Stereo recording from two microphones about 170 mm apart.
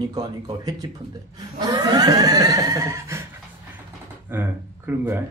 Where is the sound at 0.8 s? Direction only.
25° right (ahead or behind).